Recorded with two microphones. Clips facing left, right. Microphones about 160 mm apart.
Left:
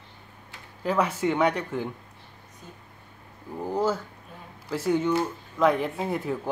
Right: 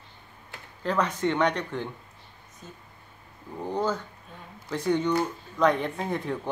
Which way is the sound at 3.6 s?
5° left (ahead or behind).